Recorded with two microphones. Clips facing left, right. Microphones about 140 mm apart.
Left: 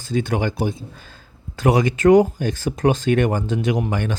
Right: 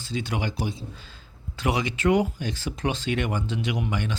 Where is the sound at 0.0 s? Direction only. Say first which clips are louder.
Left 8 dB; 50° left (ahead or behind).